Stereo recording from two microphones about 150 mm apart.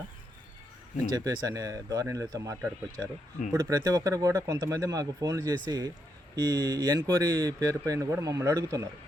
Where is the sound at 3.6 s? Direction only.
25° right (ahead or behind).